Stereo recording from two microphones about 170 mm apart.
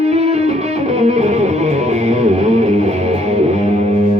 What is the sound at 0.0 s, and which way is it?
Music, 40° right (ahead or behind).